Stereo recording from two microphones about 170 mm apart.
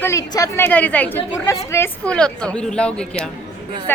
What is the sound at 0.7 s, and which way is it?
Speech, 10° left (ahead or behind).